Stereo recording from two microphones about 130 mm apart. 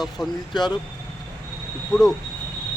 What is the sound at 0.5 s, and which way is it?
Speech, 35° left (ahead or behind).